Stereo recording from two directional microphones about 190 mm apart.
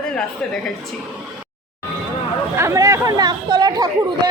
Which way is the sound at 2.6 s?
15° right (ahead or behind).